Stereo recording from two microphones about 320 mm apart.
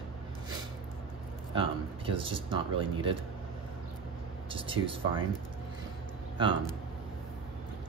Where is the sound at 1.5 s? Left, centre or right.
Centre.